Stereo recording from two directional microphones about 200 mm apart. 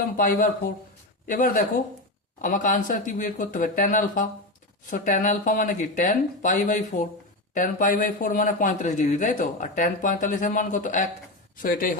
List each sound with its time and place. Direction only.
0.2 s a man's voice: 45° left (ahead or behind)